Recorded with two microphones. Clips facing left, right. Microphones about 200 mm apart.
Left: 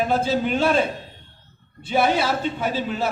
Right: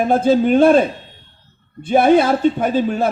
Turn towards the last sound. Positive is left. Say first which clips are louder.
# right 7 dB
turn(degrees=-50)  # may be behind; listen again after turning